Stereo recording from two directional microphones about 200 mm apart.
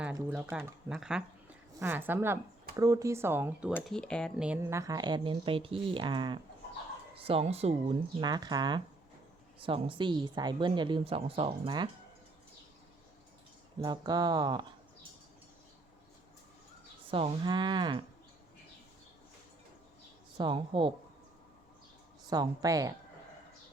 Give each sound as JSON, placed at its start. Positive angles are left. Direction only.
{"t": 0.0, "sound": "speech", "side_deg": -5}
{"t": 3.8, "sound": "speech", "side_deg": 5}
{"t": 4.4, "sound": "a woman's voice", "side_deg": -10}
{"t": 13.8, "sound": "a woman's voice", "side_deg": -20}
{"t": 17.1, "sound": "a woman's voice", "side_deg": -25}
{"t": 20.4, "sound": "a woman's voice", "side_deg": -25}
{"t": 22.3, "sound": "speech", "side_deg": -20}